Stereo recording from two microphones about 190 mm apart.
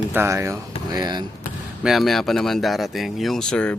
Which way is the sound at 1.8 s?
Centre (ahead or behind).